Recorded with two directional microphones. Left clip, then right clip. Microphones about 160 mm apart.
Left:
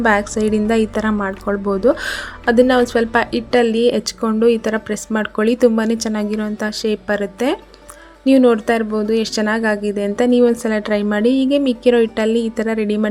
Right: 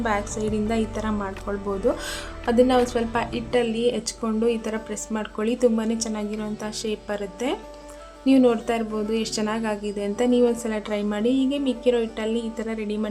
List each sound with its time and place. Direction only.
0.0 s a woman's voice: 30° left (ahead or behind)